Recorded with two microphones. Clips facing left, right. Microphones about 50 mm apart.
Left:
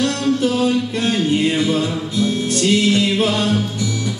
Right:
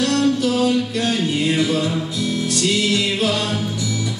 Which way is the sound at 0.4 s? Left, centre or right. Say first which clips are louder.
Left 1 dB; left.